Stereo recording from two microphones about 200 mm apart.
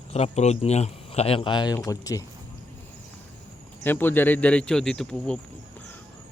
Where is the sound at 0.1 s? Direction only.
30° left (ahead or behind); by 2.2 s 15° left (ahead or behind).